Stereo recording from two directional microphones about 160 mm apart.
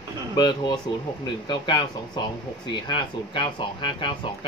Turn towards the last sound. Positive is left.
turn(degrees=30)  # may be behind; listen again after turning